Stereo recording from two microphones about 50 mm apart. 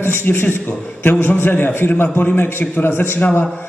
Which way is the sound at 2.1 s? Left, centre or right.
Left.